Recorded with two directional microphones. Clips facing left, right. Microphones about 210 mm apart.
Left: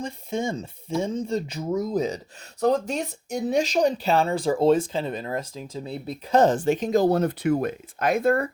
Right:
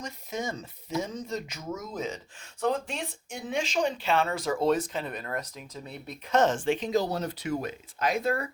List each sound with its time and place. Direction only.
0.0 s speech: 30° left (ahead or behind); by 8.4 s 50° left (ahead or behind)